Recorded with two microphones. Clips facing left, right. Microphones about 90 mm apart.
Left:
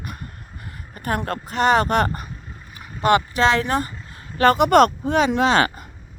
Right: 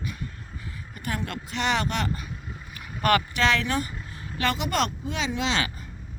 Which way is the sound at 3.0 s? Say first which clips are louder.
Left 5 dB; 25° left (ahead or behind).